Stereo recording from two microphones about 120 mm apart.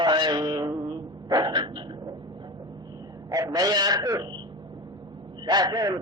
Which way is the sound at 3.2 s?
30° right (ahead or behind).